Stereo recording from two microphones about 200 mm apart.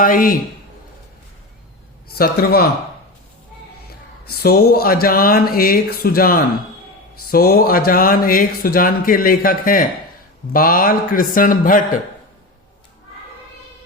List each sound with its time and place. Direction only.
0.0 s speech: 45° left (ahead or behind)
2.1 s speech: 50° left (ahead or behind)
4.3 s speech: 50° left (ahead or behind)